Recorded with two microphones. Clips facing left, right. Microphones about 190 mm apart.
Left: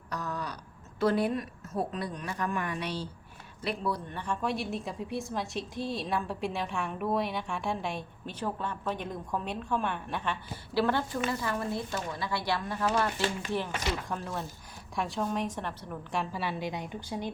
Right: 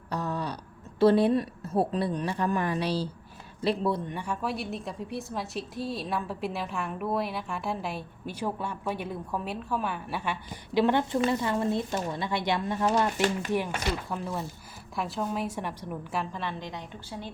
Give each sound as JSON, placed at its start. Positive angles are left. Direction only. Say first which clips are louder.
{"t": 0.1, "sound": "a woman's voice", "louder": "right 4 dB", "side_deg": -30}
{"t": 4.1, "sound": "a woman's voice", "louder": "even", "side_deg": -10}
{"t": 14.1, "sound": "a woman's voice", "louder": "right 2 dB", "side_deg": -5}
{"t": 16.3, "sound": "a woman's voice", "louder": "left 2 dB", "side_deg": 5}